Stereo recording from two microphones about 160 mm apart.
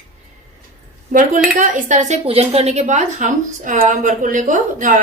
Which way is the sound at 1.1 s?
55° right (ahead or behind).